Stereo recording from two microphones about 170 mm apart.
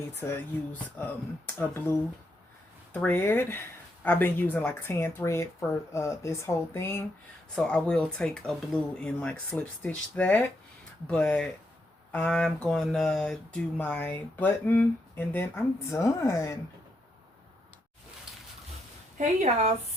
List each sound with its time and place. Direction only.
0.2 s speech: 10° left (ahead or behind)
19.1 s speech: 45° right (ahead or behind)